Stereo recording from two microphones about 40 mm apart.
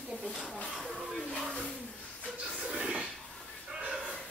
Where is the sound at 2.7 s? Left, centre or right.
Right.